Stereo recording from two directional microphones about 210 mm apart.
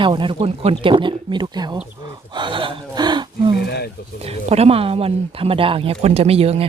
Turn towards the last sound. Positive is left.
turn(degrees=-30)  # may be behind; listen again after turning